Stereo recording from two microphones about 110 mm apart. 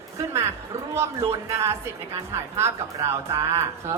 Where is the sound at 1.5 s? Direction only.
25° right (ahead or behind).